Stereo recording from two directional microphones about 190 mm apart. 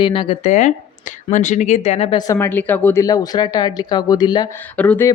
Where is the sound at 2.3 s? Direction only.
10° left (ahead or behind).